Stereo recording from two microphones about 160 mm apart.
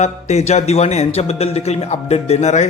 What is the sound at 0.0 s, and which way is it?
A man's voice, 45° left (ahead or behind).